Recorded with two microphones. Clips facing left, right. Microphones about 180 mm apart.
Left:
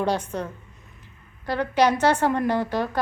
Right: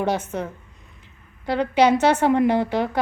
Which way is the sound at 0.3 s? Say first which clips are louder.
Right 2 dB; 10° right (ahead or behind).